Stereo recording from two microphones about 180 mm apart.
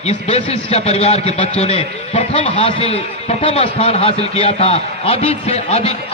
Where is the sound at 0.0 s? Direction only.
35° left (ahead or behind).